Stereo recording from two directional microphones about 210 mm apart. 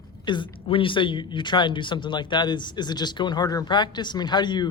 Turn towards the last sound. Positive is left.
turn(degrees=20)  # may be behind; listen again after turning